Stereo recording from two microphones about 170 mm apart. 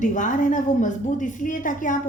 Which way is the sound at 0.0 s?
50° left (ahead or behind).